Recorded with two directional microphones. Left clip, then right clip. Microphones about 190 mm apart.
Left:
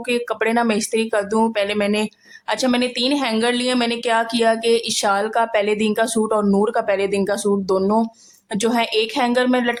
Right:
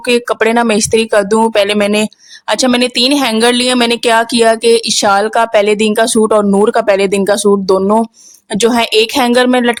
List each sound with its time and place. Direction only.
0.1 s a woman's voice: 45° right (ahead or behind)